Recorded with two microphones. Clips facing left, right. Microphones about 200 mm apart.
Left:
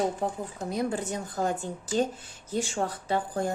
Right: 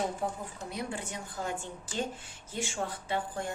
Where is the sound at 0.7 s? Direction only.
40° left (ahead or behind).